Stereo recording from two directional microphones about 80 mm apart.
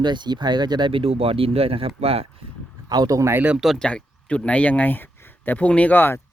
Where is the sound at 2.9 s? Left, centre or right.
Right.